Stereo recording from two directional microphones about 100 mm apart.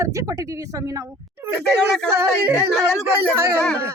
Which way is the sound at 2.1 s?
25° right (ahead or behind).